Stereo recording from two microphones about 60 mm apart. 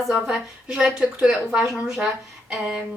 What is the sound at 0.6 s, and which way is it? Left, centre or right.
Speech, centre.